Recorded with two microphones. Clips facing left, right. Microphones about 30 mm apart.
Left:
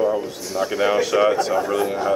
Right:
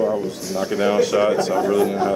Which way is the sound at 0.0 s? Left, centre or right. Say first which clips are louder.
Even; centre.